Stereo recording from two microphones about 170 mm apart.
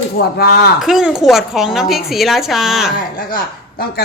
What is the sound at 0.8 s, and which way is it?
Speech, centre (ahead or behind).